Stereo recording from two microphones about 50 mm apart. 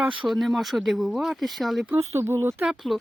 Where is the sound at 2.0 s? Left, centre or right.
Right.